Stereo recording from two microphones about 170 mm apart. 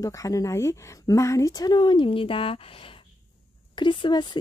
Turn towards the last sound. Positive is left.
turn(degrees=25)  # may be behind; listen again after turning